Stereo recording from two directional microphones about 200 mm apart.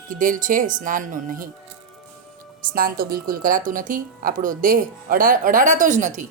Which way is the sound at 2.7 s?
45° right (ahead or behind).